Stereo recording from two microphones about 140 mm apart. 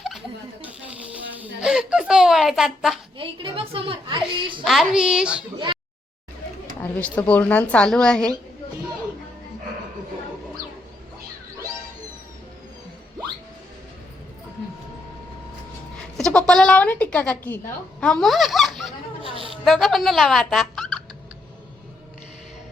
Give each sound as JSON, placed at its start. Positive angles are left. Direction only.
{"t": 0.6, "sound": "a sound", "side_deg": -10}
{"t": 3.2, "sound": "a woman's voice", "side_deg": -40}
{"t": 4.6, "sound": "a child's voice", "side_deg": 0}
{"t": 6.7, "sound": "speech", "side_deg": 10}
{"t": 16.1, "sound": "a child's voice", "side_deg": 5}
{"t": 19.2, "sound": "a sound", "side_deg": -40}
{"t": 19.6, "sound": "speech", "side_deg": 0}